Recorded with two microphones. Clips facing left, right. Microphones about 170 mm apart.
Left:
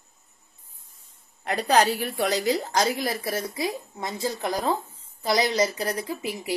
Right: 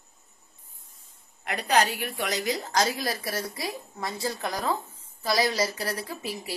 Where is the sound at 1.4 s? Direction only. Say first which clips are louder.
Left 3 dB; 35° left (ahead or behind).